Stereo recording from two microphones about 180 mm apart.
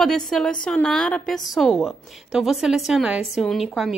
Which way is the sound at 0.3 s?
5° left (ahead or behind).